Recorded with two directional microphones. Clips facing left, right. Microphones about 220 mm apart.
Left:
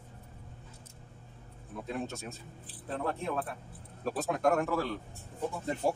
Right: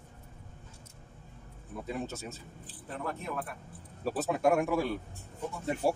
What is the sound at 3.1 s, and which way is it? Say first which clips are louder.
Speech: left 3 dB; 30° left (ahead or behind).